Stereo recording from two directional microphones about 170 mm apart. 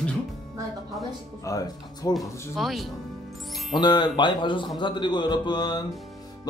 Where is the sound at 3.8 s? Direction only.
25° left (ahead or behind).